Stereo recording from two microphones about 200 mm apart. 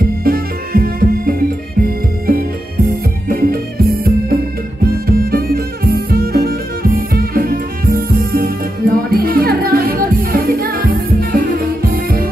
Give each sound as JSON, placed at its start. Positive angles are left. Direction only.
{"t": 0.0, "sound": "music", "side_deg": -50}